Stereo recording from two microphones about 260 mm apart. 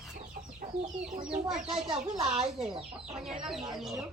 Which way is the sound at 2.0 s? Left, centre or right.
Right.